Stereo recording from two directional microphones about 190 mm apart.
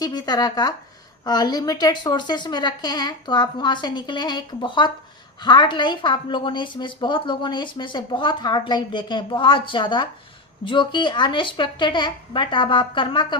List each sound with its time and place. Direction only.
0.0 s a woman's voice: 20° left (ahead or behind)